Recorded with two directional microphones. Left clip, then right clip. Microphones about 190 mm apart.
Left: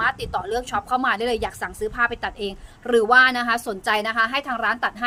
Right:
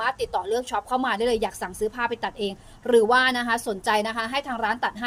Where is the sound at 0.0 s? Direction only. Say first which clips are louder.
Left 2 dB; 20° left (ahead or behind).